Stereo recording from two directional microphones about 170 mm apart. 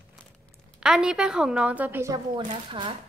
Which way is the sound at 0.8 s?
5° right (ahead or behind).